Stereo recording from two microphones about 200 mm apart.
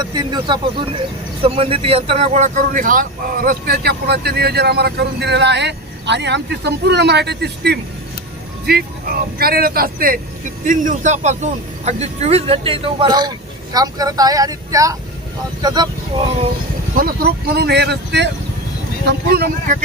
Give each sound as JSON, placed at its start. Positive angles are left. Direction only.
{"t": 0.0, "sound": "speech", "side_deg": -20}
{"t": 16.9, "sound": "speech", "side_deg": -45}